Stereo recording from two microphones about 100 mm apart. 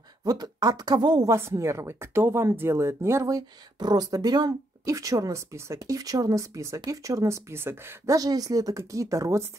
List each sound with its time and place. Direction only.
0.2 s a woman's voice: 40° right (ahead or behind)
1.3 s speech: 30° right (ahead or behind)
8.1 s speech: 40° right (ahead or behind)